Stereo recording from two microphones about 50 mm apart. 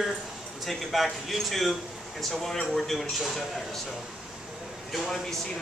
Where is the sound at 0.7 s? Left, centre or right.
Centre.